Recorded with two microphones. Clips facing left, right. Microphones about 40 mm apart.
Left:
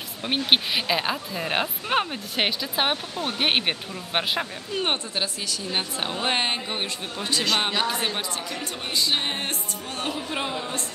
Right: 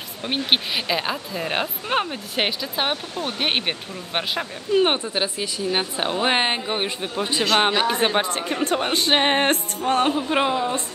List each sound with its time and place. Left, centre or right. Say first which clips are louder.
0.2 s speech: even; centre
4.7 s a woman's voice: right 7 dB; centre
7.9 s speech: right 7 dB; right